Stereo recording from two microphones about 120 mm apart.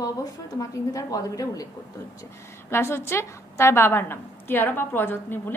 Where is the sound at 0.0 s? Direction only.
30° left (ahead or behind).